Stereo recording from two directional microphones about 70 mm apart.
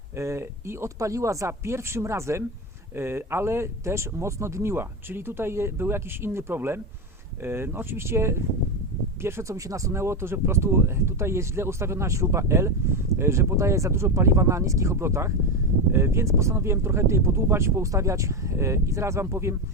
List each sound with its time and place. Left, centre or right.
0.2 s speech: right